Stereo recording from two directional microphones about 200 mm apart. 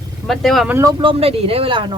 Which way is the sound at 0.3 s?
Centre (ahead or behind).